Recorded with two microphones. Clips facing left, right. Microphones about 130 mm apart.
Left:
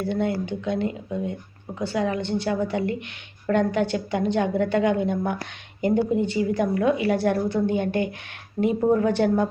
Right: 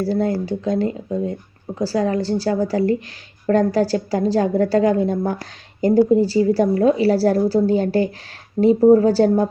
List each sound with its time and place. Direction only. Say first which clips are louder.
0.0 s a woman's voice: right 5 dB; 35° right (ahead or behind)